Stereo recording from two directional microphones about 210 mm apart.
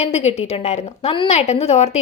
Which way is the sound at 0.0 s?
30° left (ahead or behind).